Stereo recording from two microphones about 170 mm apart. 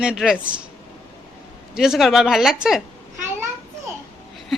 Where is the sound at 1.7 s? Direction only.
Centre (ahead or behind).